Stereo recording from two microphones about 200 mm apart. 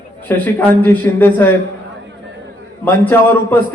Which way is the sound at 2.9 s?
10° left (ahead or behind).